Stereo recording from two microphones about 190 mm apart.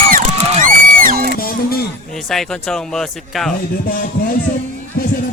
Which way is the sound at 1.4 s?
50° left (ahead or behind).